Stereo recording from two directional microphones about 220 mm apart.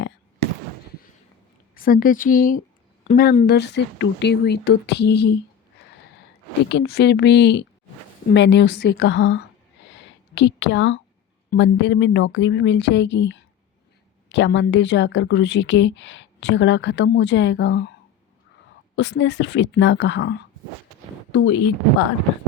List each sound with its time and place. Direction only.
1.7 s a woman's voice: 40° left (ahead or behind)
6.7 s a woman's voice: 50° left (ahead or behind)
9.9 s a sound: 55° left (ahead or behind)
11.5 s a woman's voice: 55° left (ahead or behind)
18.9 s a woman's voice: 55° left (ahead or behind)